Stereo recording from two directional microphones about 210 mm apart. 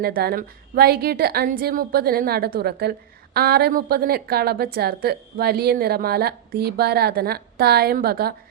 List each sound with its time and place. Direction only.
0.0 s a woman's voice: 45° right (ahead or behind)